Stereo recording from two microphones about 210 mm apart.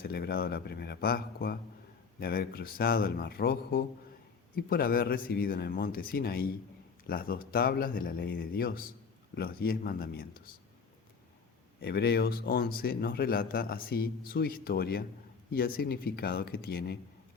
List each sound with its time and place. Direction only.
0.0 s speech: 45° left (ahead or behind)
11.8 s speech: 50° left (ahead or behind)